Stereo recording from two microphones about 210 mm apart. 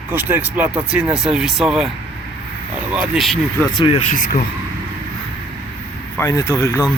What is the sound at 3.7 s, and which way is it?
Speech, 20° left (ahead or behind).